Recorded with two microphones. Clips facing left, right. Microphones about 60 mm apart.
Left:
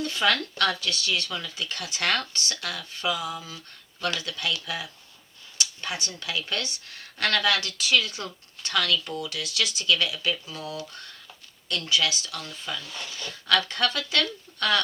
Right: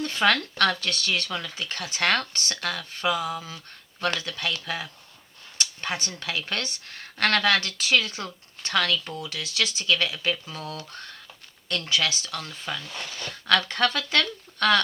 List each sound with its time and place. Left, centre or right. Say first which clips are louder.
0.0 s speech: right 2 dB; right